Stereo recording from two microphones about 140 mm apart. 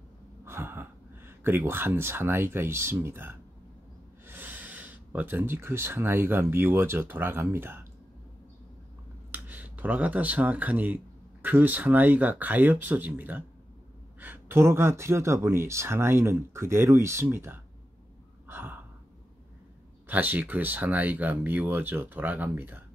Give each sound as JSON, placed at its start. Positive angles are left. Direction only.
{"t": 0.5, "sound": "speech", "side_deg": -15}
{"t": 9.3, "sound": "speech", "side_deg": -10}
{"t": 18.5, "sound": "gasp", "side_deg": -15}
{"t": 20.1, "sound": "speech", "side_deg": -10}